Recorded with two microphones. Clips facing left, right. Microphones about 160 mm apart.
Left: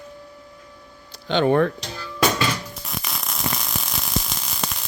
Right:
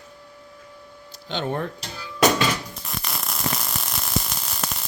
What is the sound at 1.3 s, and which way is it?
Speech, 75° left (ahead or behind).